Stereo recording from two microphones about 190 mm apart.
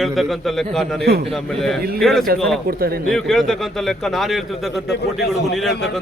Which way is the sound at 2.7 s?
50° right (ahead or behind).